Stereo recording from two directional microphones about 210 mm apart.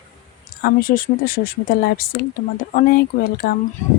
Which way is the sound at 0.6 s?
45° left (ahead or behind).